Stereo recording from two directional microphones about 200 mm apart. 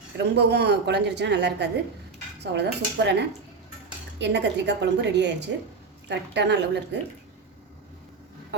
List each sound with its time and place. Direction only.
0.2 s speech: 55° right (ahead or behind)